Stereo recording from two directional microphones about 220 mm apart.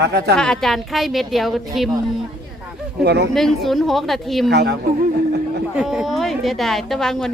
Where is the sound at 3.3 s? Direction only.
Centre (ahead or behind).